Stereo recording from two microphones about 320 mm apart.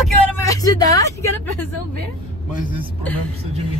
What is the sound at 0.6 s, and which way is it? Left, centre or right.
Speech, centre.